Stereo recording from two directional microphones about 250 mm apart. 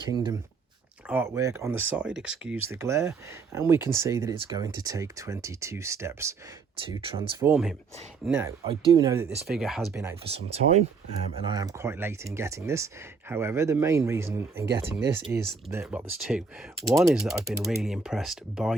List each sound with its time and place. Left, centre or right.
0.1 s speech: centre
1.0 s speech: centre
7.4 s speech: centre
8.6 s speech: right
9.5 s speech: centre
10.3 s speech: right; by 18.7 s centre